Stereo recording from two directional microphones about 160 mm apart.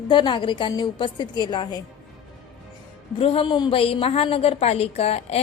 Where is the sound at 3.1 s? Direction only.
35° left (ahead or behind).